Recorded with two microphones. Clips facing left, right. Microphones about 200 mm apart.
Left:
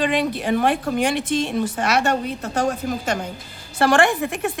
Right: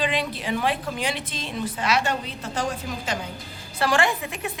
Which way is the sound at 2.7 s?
45° left (ahead or behind).